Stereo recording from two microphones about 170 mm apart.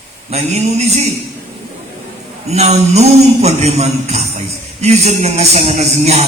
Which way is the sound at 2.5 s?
40° right (ahead or behind).